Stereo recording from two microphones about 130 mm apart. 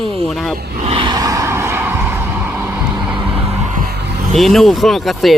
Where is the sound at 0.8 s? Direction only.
45° right (ahead or behind).